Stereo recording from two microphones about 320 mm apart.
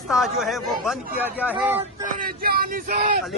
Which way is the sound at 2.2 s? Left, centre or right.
Right.